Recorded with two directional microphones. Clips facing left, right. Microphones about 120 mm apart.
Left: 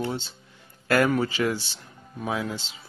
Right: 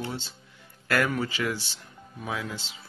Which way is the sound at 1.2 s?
30° left (ahead or behind).